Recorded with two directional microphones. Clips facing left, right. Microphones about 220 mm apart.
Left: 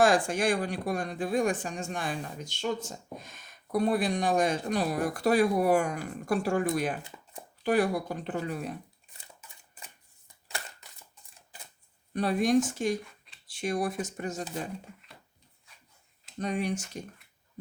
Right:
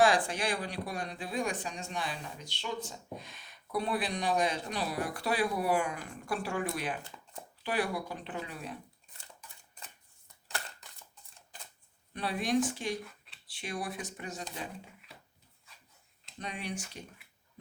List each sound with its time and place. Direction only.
0.0 s speech: 45° left (ahead or behind)
9.2 s a sound: 10° left (ahead or behind)
12.1 s speech: 45° left (ahead or behind)
13.0 s a sound: centre (ahead or behind)
13.5 s speech: 45° left (ahead or behind)
16.4 s speech: 45° left (ahead or behind)